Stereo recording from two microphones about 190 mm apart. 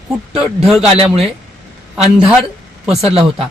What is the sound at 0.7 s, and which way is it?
Speech, 5° right (ahead or behind).